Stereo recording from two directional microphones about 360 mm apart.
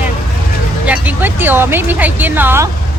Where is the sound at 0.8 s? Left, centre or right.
Centre.